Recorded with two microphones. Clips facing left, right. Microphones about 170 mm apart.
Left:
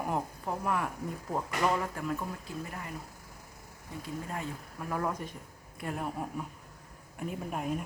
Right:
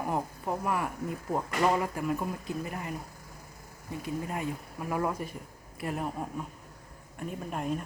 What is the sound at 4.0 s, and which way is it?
Speech, 15° right (ahead or behind).